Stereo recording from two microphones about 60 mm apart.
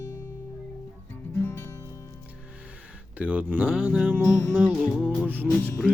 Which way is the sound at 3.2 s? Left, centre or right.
Right.